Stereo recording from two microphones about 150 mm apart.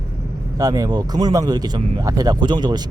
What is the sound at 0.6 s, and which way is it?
Speech, 25° right (ahead or behind).